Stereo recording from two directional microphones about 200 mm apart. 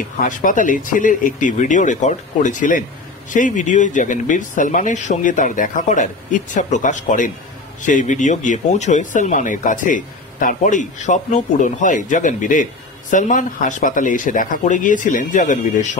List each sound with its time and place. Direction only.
0.2 s speech: 40° left (ahead or behind)